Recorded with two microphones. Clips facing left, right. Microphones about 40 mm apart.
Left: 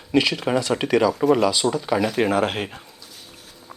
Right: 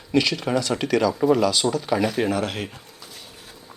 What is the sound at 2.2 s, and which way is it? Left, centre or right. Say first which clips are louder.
Speech: left 3 dB; left.